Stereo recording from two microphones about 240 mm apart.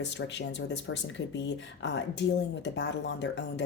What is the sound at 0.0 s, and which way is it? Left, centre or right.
Speech, left.